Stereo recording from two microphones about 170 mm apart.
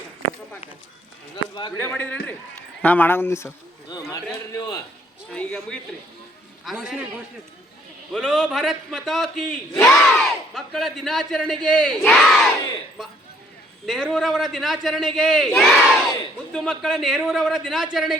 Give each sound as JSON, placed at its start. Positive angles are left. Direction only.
{"t": 1.5, "sound": "speech", "side_deg": 25}
{"t": 1.8, "sound": "a man's voice", "side_deg": 10}
{"t": 5.3, "sound": "a man's voice", "side_deg": 5}
{"t": 8.1, "sound": "speech", "side_deg": 0}
{"t": 13.8, "sound": "speech", "side_deg": 0}